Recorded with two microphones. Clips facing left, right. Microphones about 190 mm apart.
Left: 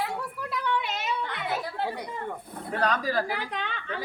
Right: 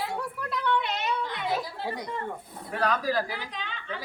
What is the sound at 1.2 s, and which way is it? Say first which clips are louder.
Children playing: right 1 dB; 60° left (ahead or behind).